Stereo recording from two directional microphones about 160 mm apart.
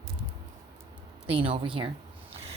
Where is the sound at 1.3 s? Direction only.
35° right (ahead or behind).